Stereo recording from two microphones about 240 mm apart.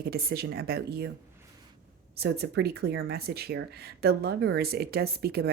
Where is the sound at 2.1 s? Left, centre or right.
Right.